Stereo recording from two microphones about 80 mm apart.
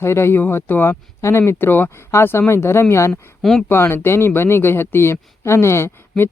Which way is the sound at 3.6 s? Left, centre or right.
Left.